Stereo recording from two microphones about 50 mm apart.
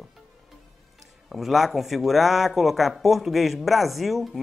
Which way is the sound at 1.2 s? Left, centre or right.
Centre.